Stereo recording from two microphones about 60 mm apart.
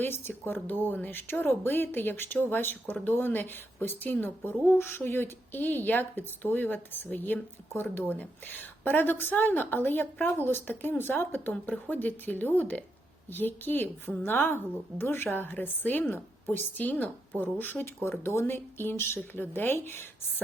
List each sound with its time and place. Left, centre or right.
0.0 s a woman's voice: left